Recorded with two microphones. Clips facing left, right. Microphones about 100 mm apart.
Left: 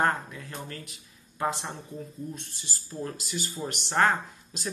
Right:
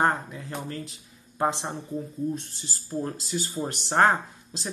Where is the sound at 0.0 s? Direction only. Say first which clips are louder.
Right 2 dB; 20° right (ahead or behind).